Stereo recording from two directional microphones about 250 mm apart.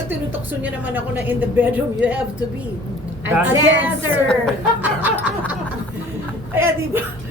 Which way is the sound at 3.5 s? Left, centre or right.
Right.